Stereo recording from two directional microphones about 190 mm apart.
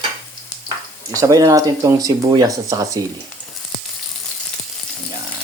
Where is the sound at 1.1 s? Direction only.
20° right (ahead or behind).